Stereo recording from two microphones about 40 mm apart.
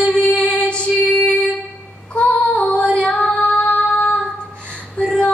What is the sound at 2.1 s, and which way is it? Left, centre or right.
Female singing, left.